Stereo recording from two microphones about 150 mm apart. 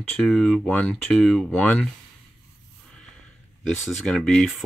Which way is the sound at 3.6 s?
5° left (ahead or behind).